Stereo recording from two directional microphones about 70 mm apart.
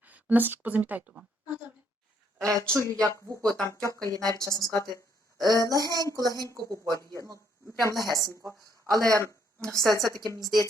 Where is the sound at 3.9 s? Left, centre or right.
Right.